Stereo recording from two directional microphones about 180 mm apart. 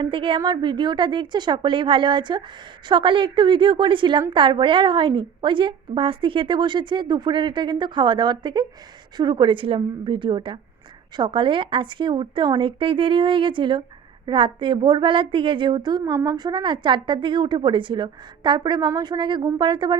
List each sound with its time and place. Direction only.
0.0 s a woman's voice: 30° right (ahead or behind)